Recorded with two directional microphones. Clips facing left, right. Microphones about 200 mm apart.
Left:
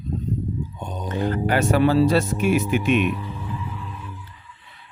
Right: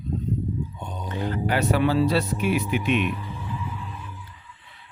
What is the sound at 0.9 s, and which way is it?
Speech, 45° left (ahead or behind).